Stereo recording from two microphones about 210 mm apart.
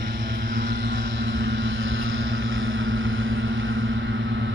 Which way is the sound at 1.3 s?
65° right (ahead or behind).